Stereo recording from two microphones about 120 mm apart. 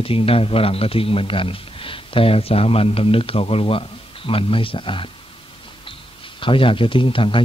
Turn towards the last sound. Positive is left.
turn(degrees=45)  # may be behind; listen again after turning